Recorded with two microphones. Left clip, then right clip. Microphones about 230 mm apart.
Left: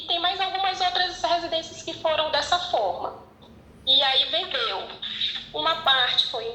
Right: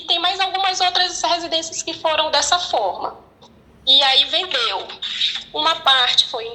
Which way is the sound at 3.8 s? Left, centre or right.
Right.